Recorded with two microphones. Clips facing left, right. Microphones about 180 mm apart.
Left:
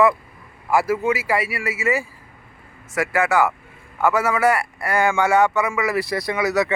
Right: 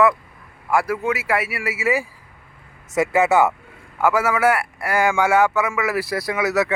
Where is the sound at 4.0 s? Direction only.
10° right (ahead or behind).